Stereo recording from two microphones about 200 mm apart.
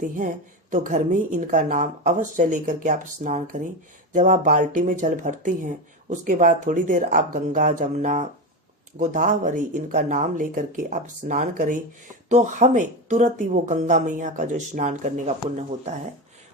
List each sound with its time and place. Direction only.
0.7 s speech: 40° right (ahead or behind)